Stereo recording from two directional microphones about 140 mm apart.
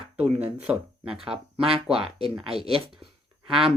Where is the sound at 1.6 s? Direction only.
40° right (ahead or behind).